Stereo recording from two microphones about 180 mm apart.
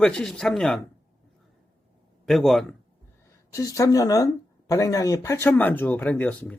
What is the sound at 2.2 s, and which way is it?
Speech, centre (ahead or behind).